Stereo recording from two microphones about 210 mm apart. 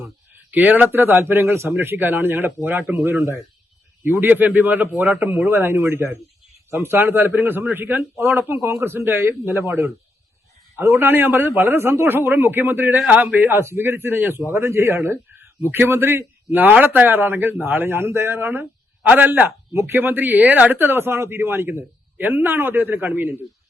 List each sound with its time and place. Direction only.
0.5 s a man's voice: 5° right (ahead or behind)